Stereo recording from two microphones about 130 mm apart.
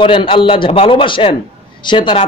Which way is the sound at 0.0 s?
40° left (ahead or behind).